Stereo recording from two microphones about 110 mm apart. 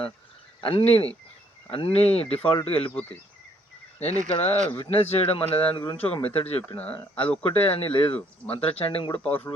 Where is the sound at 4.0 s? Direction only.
65° left (ahead or behind).